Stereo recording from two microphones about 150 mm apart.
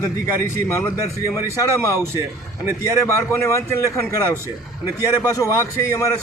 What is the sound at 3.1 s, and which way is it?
A man's voice, 20° left (ahead or behind).